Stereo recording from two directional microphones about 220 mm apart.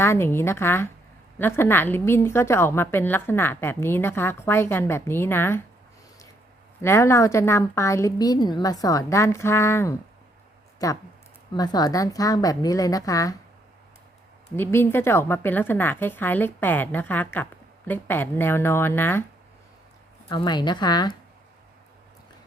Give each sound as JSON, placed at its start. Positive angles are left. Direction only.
{"t": 0.0, "sound": "a woman's voice", "side_deg": 10}
{"t": 6.8, "sound": "a woman's voice", "side_deg": 10}
{"t": 14.5, "sound": "a woman's voice", "side_deg": 10}
{"t": 20.3, "sound": "a woman's voice", "side_deg": 20}